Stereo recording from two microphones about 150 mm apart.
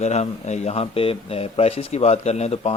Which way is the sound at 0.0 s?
50° left (ahead or behind).